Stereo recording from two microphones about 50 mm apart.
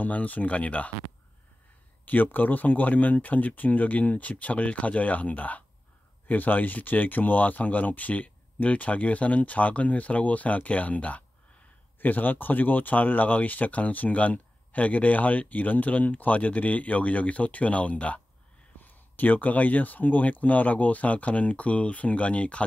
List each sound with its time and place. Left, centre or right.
0.0 s speech: left
2.0 s speech: left